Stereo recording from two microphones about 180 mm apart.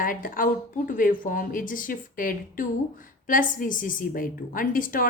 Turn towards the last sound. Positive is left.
turn(degrees=50)  # may be behind; listen again after turning